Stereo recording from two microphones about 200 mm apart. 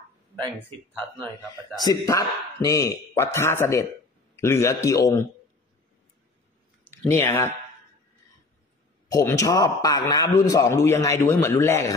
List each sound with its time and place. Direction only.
1.9 s a man's voice: 15° left (ahead or behind)
6.9 s speech: 10° left (ahead or behind)
9.1 s a man's voice: 15° left (ahead or behind)